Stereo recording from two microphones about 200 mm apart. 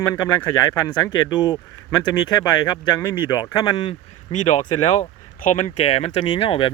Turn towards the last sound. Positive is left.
turn(degrees=25)  # may be behind; listen again after turning